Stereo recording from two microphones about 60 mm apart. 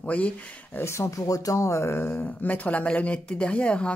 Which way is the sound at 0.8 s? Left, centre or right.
Left.